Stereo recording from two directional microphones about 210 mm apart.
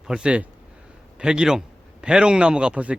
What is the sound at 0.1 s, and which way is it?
A man's voice, 5° right (ahead or behind).